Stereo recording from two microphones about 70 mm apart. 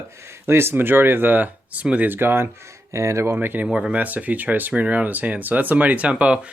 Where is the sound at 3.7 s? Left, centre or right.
Centre.